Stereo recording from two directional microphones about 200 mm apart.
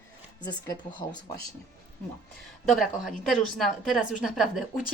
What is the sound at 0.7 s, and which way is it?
Speech, 20° left (ahead or behind).